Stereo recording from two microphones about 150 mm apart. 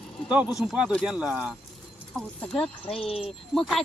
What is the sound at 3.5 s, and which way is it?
Speech, 5° left (ahead or behind).